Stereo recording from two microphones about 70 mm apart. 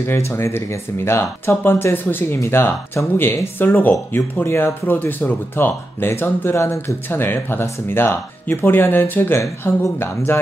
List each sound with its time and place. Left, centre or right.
0.0 s speech: left